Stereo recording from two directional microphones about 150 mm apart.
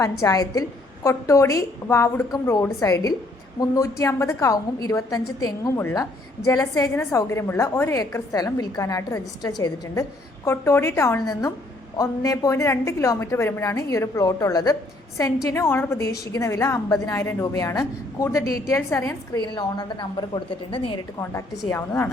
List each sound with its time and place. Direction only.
0.0 s a woman's voice: 20° left (ahead or behind)
21.7 s a woman's voice: 15° left (ahead or behind)